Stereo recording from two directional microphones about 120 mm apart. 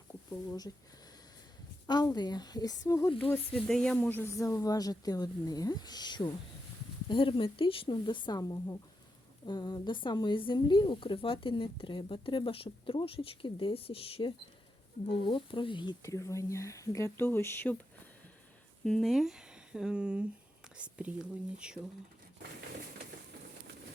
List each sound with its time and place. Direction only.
1.9 s speech: 35° left (ahead or behind)
3.5 s speech: 5° left (ahead or behind)
4.2 s speech: 25° left (ahead or behind); by 16.0 s 40° left (ahead or behind)
16.0 s speech: 25° left (ahead or behind)
18.9 s speech: centre (ahead or behind)